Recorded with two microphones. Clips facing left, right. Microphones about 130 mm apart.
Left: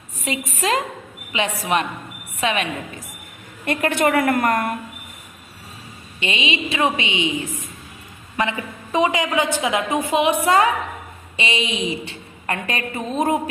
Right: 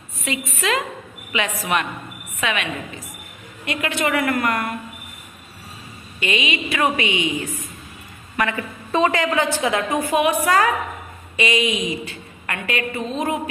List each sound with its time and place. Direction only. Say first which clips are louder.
0.3 s a woman's voice: left 1 dB; 35° left (ahead or behind)
3.7 s a woman's voice: left 4 dB; 50° left (ahead or behind)
6.1 s a woman's voice: right 1 dB; 25° left (ahead or behind)